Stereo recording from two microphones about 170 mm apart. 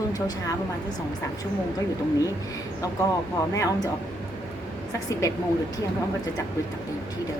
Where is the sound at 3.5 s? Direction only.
20° left (ahead or behind).